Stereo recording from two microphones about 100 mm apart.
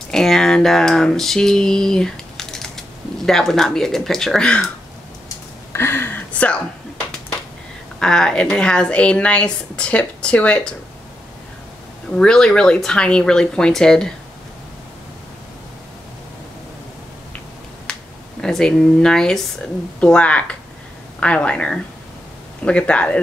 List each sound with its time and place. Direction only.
0.1 s a sound: 5° left (ahead or behind)
3.3 s speech: 5° left (ahead or behind)
5.7 s a sound: 25° left (ahead or behind)
8.0 s a woman's voice: 5° left (ahead or behind)
12.2 s a woman's voice: 5° left (ahead or behind)
18.4 s a woman's voice: 5° left (ahead or behind)